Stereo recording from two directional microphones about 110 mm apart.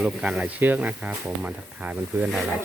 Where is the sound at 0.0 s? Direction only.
10° right (ahead or behind).